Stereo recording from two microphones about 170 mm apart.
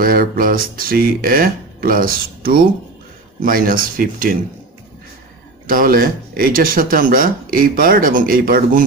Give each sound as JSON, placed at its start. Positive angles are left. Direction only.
{"t": 0.0, "sound": "speech", "side_deg": -60}
{"t": 5.7, "sound": "speech", "side_deg": -55}